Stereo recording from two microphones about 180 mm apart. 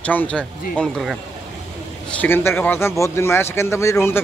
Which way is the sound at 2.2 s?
10° left (ahead or behind).